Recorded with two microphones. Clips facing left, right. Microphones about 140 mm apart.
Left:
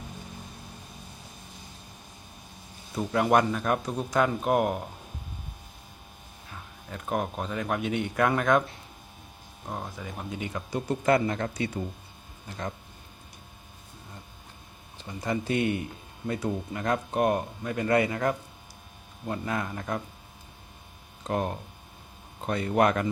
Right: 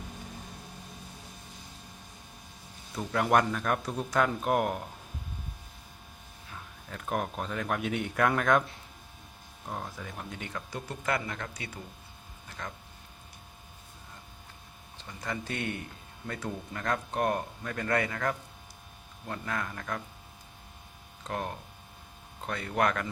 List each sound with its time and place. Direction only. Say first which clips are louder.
2.9 s speech: left 3 dB; 10° left (ahead or behind)
6.9 s speech: left 3 dB; 5° left (ahead or behind)
9.6 s speech: left 2 dB; 5° left (ahead or behind); by 12.7 s 30° left (ahead or behind)
14.9 s speech: left 7 dB; 20° left (ahead or behind)
21.2 s speech: left 6 dB; 20° left (ahead or behind)